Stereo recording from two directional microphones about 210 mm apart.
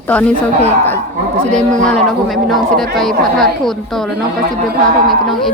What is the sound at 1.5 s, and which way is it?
A woman's voice, 5° left (ahead or behind).